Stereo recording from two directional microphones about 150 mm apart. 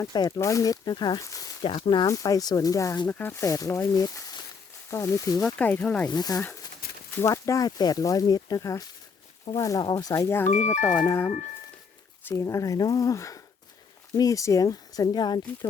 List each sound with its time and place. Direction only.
0.0 s speech: 25° left (ahead or behind)
1.6 s speech: 35° left (ahead or behind)
2.0 s speech: 25° left (ahead or behind)
3.1 s speech: 10° left (ahead or behind)
5.4 s speech: 5° left (ahead or behind)
6.1 s speech: 25° left (ahead or behind)
6.8 s a sound: 80° left
7.2 s speech: 20° left (ahead or behind)
10.5 s speech: 55° left (ahead or behind)
11.0 s speech: 20° left (ahead or behind)